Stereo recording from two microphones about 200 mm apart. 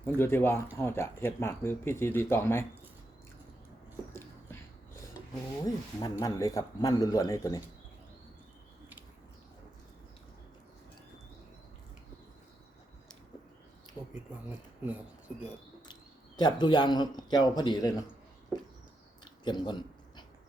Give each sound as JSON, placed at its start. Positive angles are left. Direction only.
{"t": 0.0, "sound": "speech", "side_deg": 10}
{"t": 4.1, "sound": "a sound", "side_deg": 10}
{"t": 5.6, "sound": "speech", "side_deg": 20}
{"t": 16.4, "sound": "speech", "side_deg": 20}
{"t": 19.2, "sound": "biting", "side_deg": 20}